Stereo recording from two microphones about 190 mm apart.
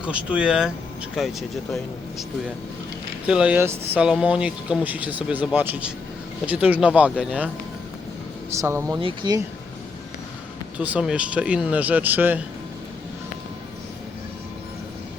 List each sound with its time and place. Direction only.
0.0 s speech: 5° right (ahead or behind)
3.2 s speech: 5° right (ahead or behind)
8.6 s speech: 15° right (ahead or behind)
10.8 s speech: 5° right (ahead or behind)